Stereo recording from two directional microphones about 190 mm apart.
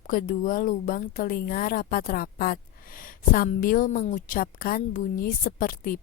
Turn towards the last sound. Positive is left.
turn(degrees=50)  # may be behind; listen again after turning